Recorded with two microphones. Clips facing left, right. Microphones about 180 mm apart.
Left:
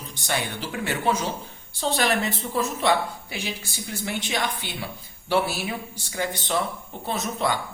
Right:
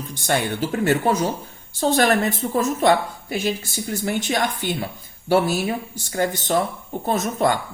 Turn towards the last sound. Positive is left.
turn(degrees=-50)  # may be behind; listen again after turning